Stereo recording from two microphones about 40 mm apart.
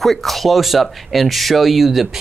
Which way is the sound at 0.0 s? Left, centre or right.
Centre.